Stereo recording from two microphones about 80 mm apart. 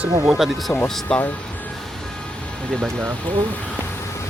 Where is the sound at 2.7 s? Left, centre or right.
Centre.